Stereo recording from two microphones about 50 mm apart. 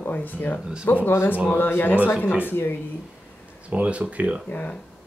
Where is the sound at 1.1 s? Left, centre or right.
Left.